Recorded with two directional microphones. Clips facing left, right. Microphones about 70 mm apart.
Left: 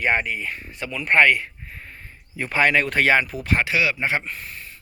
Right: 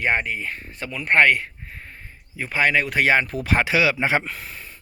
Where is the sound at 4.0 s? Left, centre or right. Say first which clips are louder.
Right 3 dB; right.